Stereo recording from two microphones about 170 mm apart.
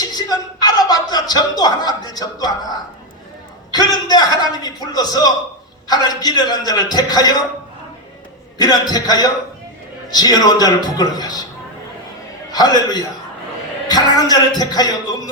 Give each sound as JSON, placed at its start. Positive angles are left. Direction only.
{"t": 0.0, "sound": "speech", "side_deg": 25}
{"t": 3.7, "sound": "a man's voice", "side_deg": 25}
{"t": 8.5, "sound": "speech", "side_deg": 25}
{"t": 12.5, "sound": "a man's voice", "side_deg": 25}